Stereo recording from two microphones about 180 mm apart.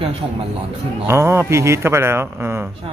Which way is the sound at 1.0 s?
15° right (ahead or behind).